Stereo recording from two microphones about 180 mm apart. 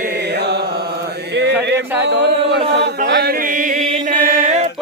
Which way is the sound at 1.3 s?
70° right (ahead or behind).